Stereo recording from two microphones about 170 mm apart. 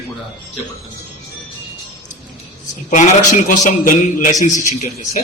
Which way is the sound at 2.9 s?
45° left (ahead or behind).